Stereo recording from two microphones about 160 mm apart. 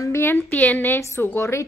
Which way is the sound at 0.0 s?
15° left (ahead or behind).